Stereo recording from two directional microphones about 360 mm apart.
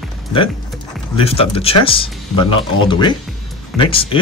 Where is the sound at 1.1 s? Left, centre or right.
Centre.